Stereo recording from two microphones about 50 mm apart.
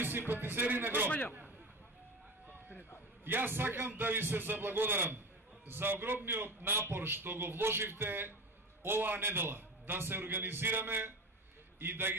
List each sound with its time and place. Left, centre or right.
0.3 s a man's voice: right
3.3 s a man's voice: right